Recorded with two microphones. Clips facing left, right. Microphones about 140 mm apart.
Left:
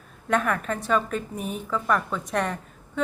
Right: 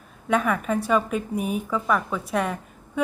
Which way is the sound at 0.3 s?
5° right (ahead or behind).